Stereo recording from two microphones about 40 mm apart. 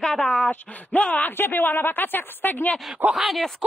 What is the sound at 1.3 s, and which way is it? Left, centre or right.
Speech, left.